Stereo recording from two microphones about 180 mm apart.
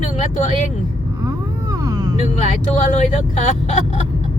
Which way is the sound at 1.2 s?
20° right (ahead or behind).